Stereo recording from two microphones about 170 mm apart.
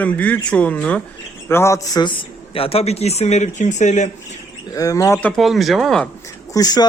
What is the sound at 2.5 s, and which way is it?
Speech, 35° left (ahead or behind).